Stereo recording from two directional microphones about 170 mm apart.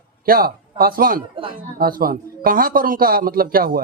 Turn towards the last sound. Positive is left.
turn(degrees=-60)  # may be behind; listen again after turning